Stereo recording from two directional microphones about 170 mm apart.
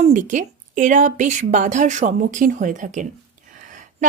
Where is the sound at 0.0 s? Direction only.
50° right (ahead or behind).